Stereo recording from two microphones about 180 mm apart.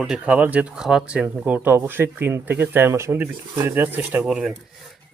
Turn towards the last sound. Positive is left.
turn(degrees=-5)  # may be behind; listen again after turning